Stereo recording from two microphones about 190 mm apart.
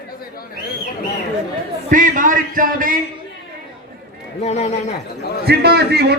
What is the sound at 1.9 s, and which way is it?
A man's voice, 45° right (ahead or behind).